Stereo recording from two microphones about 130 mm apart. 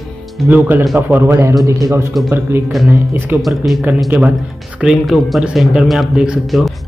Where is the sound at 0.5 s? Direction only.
15° right (ahead or behind).